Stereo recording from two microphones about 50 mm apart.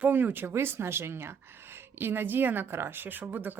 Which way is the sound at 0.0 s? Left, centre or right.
Right.